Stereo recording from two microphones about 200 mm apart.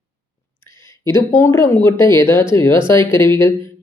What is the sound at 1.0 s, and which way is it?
Speech, 15° left (ahead or behind).